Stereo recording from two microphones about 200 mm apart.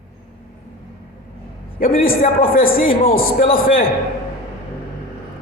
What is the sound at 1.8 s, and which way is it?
A man's voice, 45° left (ahead or behind).